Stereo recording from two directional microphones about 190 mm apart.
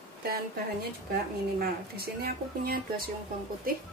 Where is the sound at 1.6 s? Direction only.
55° right (ahead or behind).